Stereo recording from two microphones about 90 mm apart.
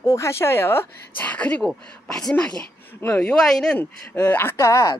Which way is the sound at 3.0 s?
20° left (ahead or behind).